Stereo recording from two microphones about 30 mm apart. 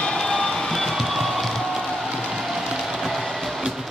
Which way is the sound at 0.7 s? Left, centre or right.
Centre.